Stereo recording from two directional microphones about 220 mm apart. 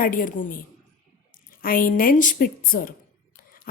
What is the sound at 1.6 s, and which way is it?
A woman's voice, 40° left (ahead or behind).